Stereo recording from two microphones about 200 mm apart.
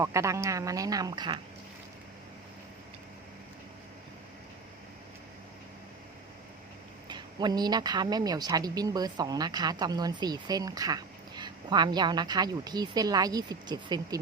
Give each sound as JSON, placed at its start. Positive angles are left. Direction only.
{"t": 0.0, "sound": "speech", "side_deg": -15}
{"t": 7.1, "sound": "speech", "side_deg": -20}